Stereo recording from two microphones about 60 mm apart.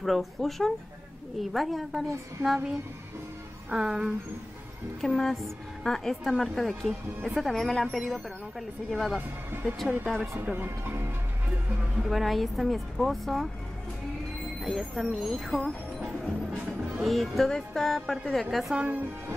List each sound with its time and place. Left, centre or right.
0.0 s a woman's voice: centre
3.7 s speech: centre
5.0 s a woman's voice: centre
10.8 s speech: right
12.0 s a woman's voice: centre
14.6 s a woman's voice: centre
18.8 s speech: right